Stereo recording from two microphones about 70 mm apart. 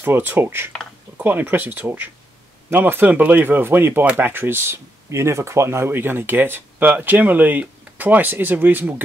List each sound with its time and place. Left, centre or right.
0.0 s speech: right